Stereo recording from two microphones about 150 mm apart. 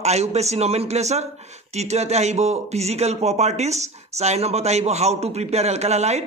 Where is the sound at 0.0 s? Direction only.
45° right (ahead or behind).